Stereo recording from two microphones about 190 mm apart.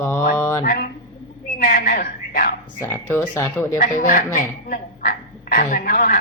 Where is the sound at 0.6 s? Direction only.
50° left (ahead or behind).